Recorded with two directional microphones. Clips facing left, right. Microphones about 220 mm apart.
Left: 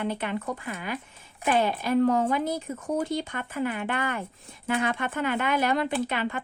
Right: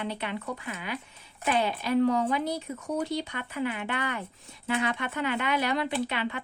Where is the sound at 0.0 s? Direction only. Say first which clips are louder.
Left 4 dB; 50° left (ahead or behind).